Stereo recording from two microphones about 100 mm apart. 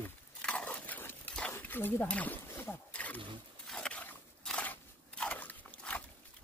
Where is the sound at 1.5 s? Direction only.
20° left (ahead or behind).